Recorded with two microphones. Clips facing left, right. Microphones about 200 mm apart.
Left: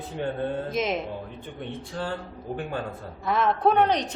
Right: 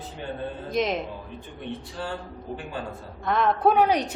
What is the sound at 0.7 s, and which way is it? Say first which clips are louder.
Speech: right 6 dB; centre (ahead or behind).